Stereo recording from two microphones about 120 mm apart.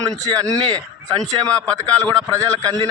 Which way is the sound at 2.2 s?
30° right (ahead or behind).